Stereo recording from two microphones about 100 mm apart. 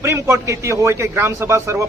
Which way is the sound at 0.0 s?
30° right (ahead or behind).